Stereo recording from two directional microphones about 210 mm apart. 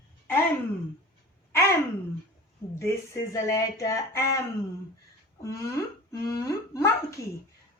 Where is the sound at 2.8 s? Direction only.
15° left (ahead or behind).